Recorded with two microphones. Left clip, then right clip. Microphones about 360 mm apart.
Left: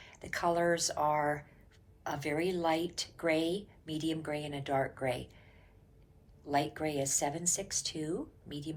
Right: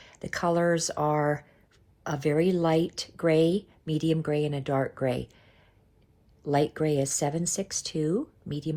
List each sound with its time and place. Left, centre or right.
0.0 s speech: centre
6.5 s speech: centre